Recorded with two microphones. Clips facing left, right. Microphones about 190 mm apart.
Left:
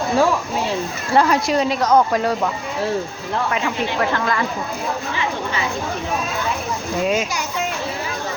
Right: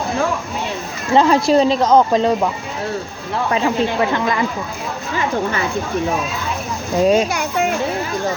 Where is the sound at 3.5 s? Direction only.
30° right (ahead or behind).